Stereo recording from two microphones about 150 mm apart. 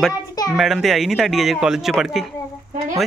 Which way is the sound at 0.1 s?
25° left (ahead or behind).